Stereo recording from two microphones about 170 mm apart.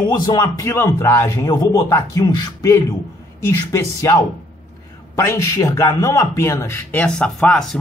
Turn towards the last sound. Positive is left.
turn(degrees=5)  # may be behind; listen again after turning